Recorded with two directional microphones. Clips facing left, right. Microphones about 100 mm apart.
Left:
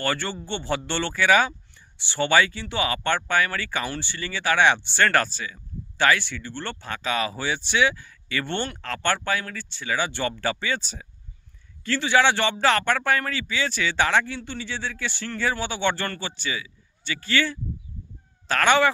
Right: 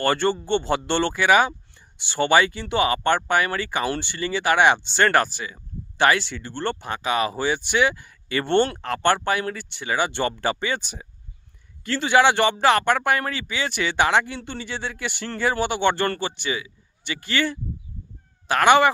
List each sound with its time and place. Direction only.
0.0 s a man's voice: 20° right (ahead or behind)